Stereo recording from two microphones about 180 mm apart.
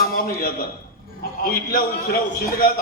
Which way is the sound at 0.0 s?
55° left (ahead or behind).